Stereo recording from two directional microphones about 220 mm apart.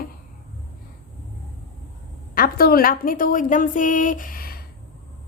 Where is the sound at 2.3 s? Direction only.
40° left (ahead or behind).